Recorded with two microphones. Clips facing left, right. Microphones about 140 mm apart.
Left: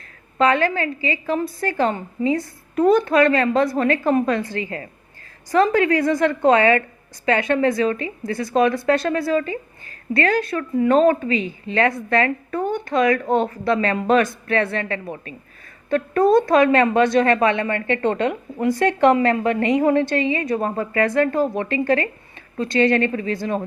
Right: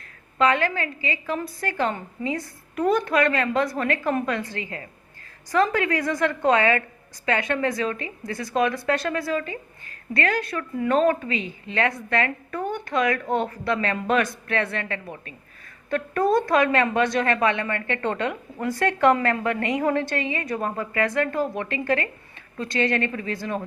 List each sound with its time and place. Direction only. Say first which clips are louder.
0.3 s a woman's voice: left 4 dB; 35° left (ahead or behind)